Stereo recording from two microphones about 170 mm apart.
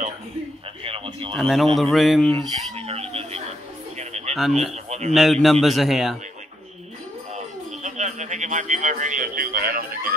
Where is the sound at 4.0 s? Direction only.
40° right (ahead or behind).